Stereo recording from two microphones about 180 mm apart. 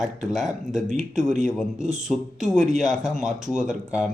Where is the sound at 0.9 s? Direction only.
45° right (ahead or behind).